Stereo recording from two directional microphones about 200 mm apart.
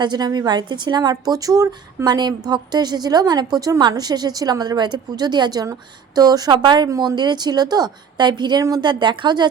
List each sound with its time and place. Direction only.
0.0 s speech: 20° right (ahead or behind)